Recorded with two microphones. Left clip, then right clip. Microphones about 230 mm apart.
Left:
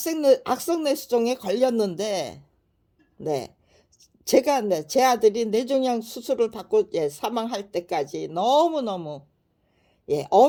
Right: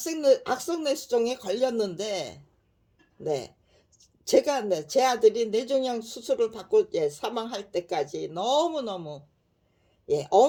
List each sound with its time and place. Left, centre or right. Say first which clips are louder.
0.0 s speech: left 3 dB; left